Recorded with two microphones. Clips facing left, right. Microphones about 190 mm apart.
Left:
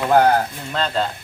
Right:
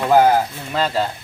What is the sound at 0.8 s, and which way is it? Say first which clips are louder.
Speech: right 2 dB; 5° right (ahead or behind).